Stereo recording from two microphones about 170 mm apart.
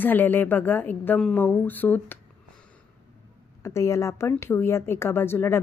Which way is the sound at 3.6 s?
15° left (ahead or behind).